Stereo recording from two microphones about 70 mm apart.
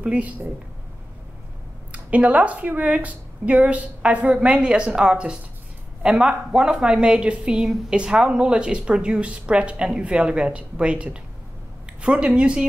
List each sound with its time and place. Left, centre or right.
0.0 s speech: right
1.9 s a woman's voice: right
11.8 s a sound: centre
12.4 s a woman's voice: centre